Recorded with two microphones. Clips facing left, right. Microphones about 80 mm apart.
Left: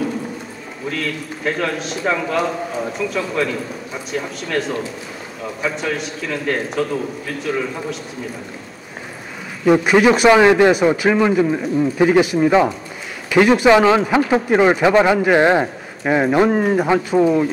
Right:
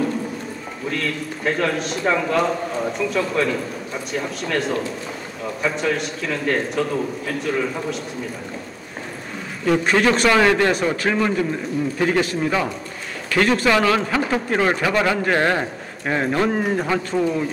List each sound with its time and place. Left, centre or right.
0.8 s a man's voice: centre
9.7 s a man's voice: centre